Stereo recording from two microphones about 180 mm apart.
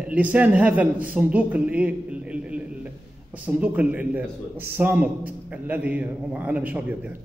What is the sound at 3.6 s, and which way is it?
A man's voice, 10° right (ahead or behind).